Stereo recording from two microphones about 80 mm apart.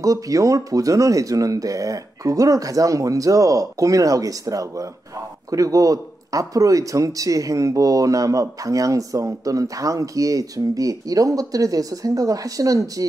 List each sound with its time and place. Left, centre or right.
0.0 s speech: right